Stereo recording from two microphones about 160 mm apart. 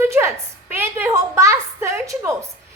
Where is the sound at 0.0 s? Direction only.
15° right (ahead or behind).